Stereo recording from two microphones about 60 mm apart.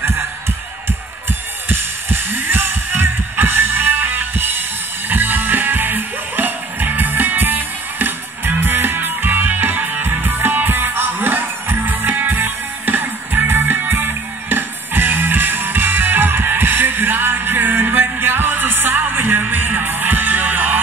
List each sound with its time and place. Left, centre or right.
1.7 s music: right